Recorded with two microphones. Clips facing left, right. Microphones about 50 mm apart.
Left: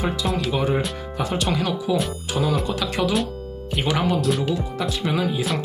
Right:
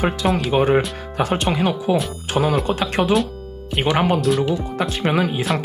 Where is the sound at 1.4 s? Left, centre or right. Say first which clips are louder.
Right 3 dB; right.